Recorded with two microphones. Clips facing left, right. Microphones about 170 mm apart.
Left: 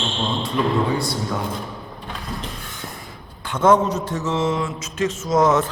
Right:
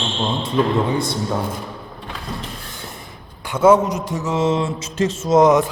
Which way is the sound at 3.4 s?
10° right (ahead or behind).